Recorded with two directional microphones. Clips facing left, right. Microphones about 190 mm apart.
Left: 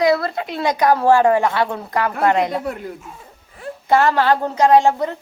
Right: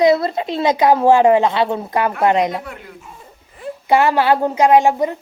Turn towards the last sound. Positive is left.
turn(degrees=-15)  # may be behind; listen again after turning